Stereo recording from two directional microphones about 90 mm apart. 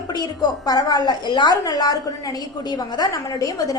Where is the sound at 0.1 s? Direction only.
45° left (ahead or behind).